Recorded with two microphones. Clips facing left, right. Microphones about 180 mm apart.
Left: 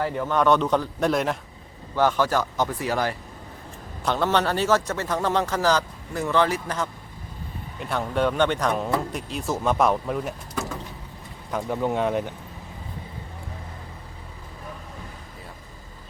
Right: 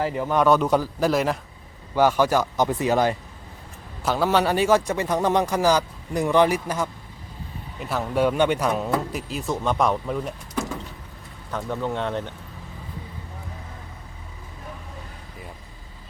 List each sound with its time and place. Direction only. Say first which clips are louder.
0.0 s a man's voice: right 1 dB; 10° right (ahead or behind)
4.0 s a man's voice: right 2 dB; 5° right (ahead or behind)
11.5 s speech: left 2 dB; 15° left (ahead or behind)